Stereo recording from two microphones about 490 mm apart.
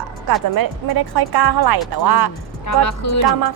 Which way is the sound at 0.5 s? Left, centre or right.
Right.